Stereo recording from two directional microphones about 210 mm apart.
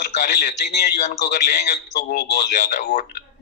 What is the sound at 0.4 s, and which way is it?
Speech, 50° left (ahead or behind).